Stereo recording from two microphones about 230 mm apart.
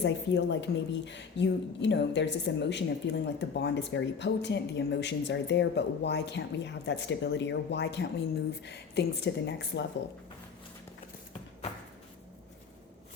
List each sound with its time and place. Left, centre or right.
0.0 s a woman's voice: left